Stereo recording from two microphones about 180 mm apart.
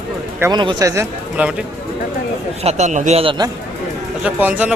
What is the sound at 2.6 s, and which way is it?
Speech, 40° right (ahead or behind).